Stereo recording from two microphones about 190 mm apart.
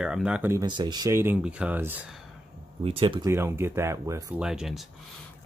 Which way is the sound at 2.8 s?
25° right (ahead or behind).